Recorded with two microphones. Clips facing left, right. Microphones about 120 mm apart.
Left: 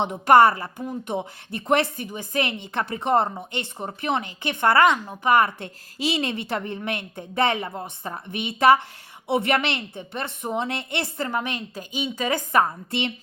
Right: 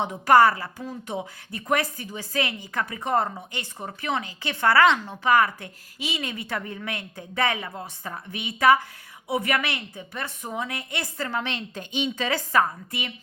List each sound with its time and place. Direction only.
0.0 s a woman's voice: 25° left (ahead or behind)
5.3 s a woman's voice: 25° left (ahead or behind)
11.3 s a woman's voice: 15° left (ahead or behind)